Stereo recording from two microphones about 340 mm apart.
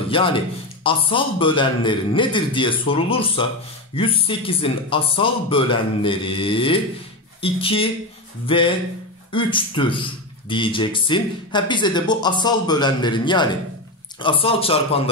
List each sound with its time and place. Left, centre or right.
0.1 s a man's voice: centre